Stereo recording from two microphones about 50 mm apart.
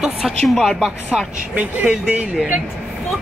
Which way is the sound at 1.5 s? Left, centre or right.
Right.